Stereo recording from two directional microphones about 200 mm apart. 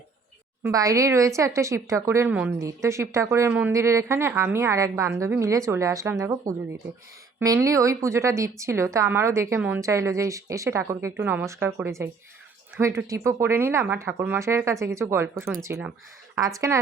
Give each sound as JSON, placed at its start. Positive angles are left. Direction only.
{"t": 0.6, "sound": "speech", "side_deg": -15}
{"t": 7.3, "sound": "speech", "side_deg": -15}